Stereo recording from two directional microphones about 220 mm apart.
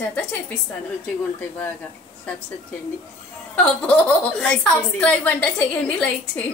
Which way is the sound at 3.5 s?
5° left (ahead or behind).